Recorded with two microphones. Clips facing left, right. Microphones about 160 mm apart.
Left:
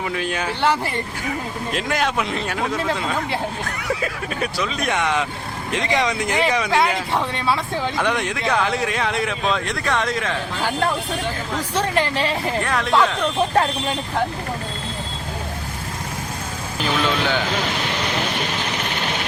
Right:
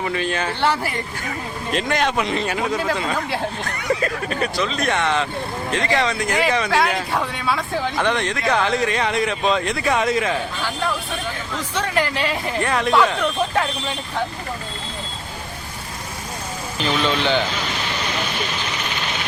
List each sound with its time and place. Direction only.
0.0 s speech: 5° left (ahead or behind); by 7.6 s 30° left (ahead or behind)
7.9 s speech: 10° left (ahead or behind)
8.4 s speech: centre (ahead or behind)
11.5 s speech: 30° left (ahead or behind)
12.6 s speech: centre (ahead or behind)
16.8 s speech: 5° left (ahead or behind)